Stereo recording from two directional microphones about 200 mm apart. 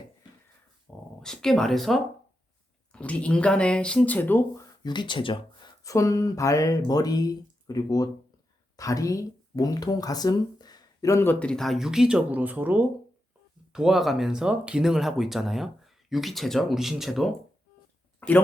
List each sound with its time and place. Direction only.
0.9 s dog: 5° left (ahead or behind)
1.2 s speech: 5° left (ahead or behind)
18.2 s a sound: 10° left (ahead or behind)